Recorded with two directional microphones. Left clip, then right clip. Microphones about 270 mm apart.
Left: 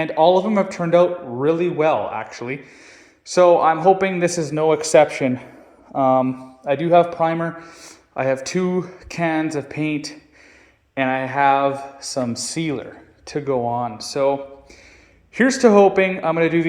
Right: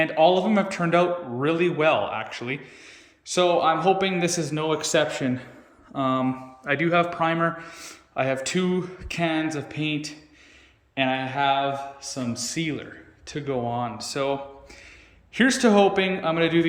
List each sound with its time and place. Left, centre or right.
0.2 s speech: centre
0.4 s a man's voice: centre
9.7 s speech: left
10.9 s a man's voice: centre